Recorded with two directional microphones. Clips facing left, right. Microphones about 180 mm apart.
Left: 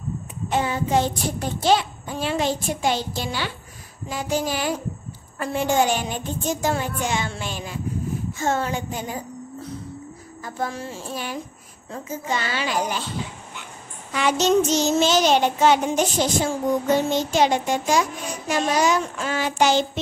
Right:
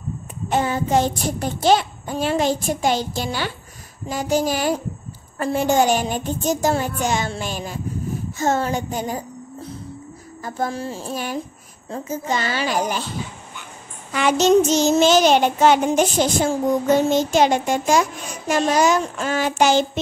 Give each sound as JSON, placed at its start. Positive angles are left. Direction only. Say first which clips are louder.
{"t": 0.5, "sound": "child singing", "louder": "right 2 dB", "side_deg": -45}
{"t": 10.4, "sound": "child singing", "louder": "right 4 dB", "side_deg": -35}
{"t": 14.1, "sound": "child singing", "louder": "right 4 dB", "side_deg": -50}